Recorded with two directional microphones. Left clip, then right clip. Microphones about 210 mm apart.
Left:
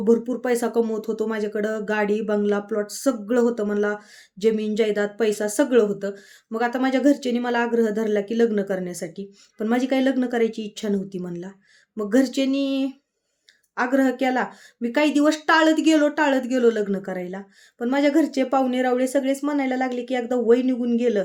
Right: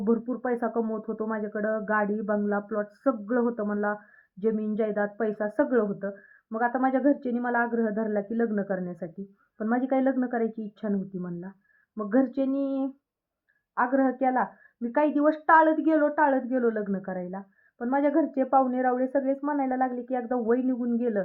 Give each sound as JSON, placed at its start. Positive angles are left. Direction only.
{"t": 0.0, "sound": "speech", "side_deg": 40}
{"t": 0.8, "sound": "speech", "side_deg": 35}
{"t": 13.7, "sound": "speech", "side_deg": 40}
{"t": 16.0, "sound": "a woman's voice", "side_deg": 35}
{"t": 16.2, "sound": "speech", "side_deg": 50}
{"t": 18.5, "sound": "speech", "side_deg": 35}